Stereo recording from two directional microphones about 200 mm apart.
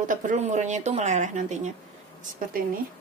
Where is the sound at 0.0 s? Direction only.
40° right (ahead or behind).